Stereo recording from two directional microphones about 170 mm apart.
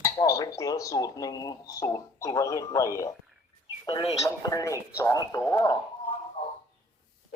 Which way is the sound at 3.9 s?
35° left (ahead or behind).